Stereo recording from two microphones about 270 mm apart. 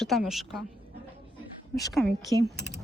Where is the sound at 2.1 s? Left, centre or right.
Right.